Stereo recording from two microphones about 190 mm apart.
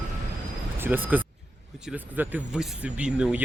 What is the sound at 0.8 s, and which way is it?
Speech, 10° right (ahead or behind).